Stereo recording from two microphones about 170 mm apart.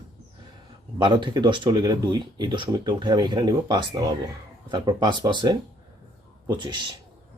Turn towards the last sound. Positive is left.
turn(degrees=-25)  # may be behind; listen again after turning